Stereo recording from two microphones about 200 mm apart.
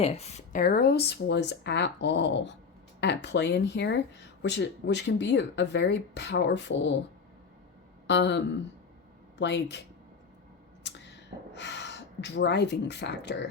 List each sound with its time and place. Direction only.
0.0 s speech: 30° left (ahead or behind); by 7.0 s 60° left (ahead or behind)
8.0 s speech: 60° left (ahead or behind)
10.8 s gasp: 60° left (ahead or behind)